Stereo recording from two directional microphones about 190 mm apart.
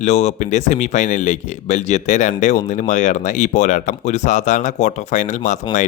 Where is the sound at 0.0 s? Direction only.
35° left (ahead or behind).